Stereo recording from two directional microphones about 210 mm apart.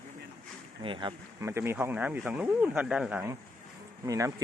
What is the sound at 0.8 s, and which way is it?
Speech, 25° right (ahead or behind).